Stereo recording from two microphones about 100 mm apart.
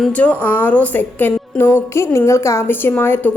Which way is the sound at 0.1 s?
15° left (ahead or behind).